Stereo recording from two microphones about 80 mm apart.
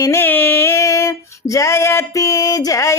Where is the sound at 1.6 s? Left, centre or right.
Left.